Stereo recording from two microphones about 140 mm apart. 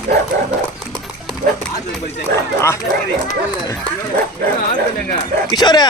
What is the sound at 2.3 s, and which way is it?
Speech, 20° left (ahead or behind).